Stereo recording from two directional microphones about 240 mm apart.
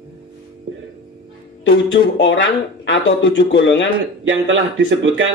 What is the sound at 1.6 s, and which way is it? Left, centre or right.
Speech, left.